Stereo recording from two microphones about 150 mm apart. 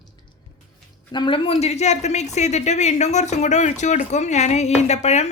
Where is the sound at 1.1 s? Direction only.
30° left (ahead or behind); by 5.3 s 50° left (ahead or behind).